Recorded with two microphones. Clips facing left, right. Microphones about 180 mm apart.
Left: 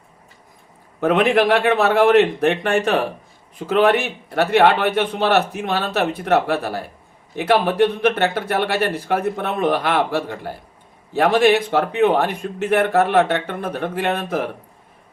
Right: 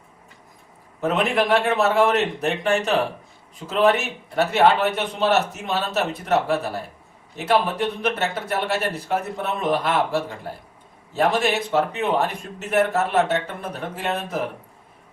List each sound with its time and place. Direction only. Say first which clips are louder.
1.0 s a man's voice: left 5 dB; 60° left (ahead or behind)